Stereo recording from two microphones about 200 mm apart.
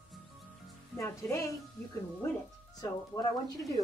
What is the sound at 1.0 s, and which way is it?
Speech, 15° left (ahead or behind).